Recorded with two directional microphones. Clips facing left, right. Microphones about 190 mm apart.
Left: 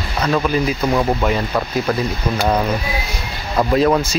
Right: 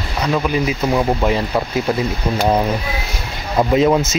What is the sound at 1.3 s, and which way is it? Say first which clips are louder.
Speech: right 1 dB; 20° right (ahead or behind).